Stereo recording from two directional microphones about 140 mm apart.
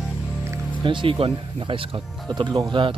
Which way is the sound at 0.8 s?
35° right (ahead or behind).